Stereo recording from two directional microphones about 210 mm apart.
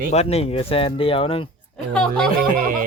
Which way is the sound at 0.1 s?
30° left (ahead or behind).